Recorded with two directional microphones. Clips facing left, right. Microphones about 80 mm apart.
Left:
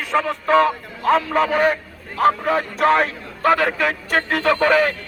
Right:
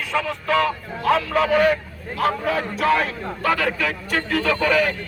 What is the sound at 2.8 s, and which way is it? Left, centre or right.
A man's voice, left.